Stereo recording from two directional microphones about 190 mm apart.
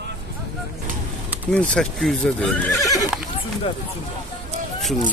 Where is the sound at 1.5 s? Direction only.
5° left (ahead or behind).